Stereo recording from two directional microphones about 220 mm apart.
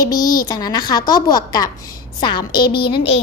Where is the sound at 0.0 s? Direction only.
15° left (ahead or behind).